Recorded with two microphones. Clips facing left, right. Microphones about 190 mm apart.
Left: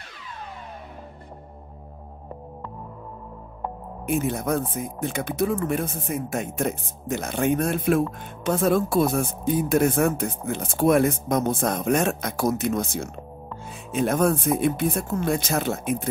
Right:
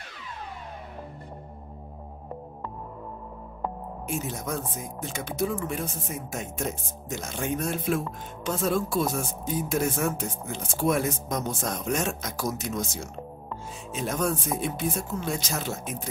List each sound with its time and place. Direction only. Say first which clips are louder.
4.0 s speech: left 8 dB; 60° left (ahead or behind)